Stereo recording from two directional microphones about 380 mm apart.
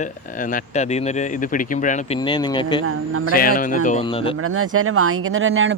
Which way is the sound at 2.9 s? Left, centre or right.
Right.